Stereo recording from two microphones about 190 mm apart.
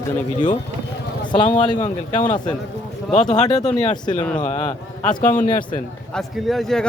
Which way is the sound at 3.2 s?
40° left (ahead or behind).